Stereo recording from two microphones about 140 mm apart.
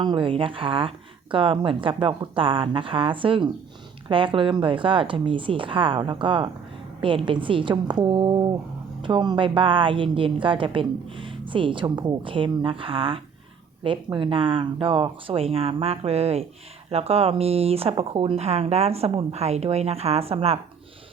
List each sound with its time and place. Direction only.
0.0 s speech: 35° right (ahead or behind)